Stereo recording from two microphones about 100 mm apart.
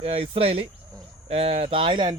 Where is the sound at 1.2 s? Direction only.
80° right; by 2.2 s 50° right (ahead or behind).